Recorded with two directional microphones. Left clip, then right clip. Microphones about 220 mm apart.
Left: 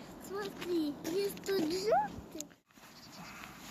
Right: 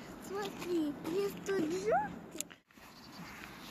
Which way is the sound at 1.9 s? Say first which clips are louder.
Left 2 dB; 35° left (ahead or behind).